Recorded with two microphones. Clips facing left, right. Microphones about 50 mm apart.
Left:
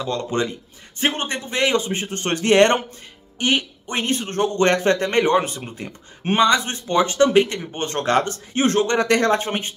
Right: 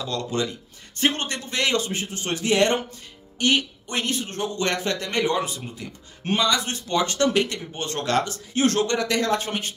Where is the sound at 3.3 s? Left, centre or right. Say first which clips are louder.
Left 1 dB; centre.